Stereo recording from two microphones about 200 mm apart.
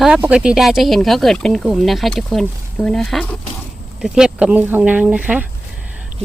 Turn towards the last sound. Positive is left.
turn(degrees=-5)  # may be behind; listen again after turning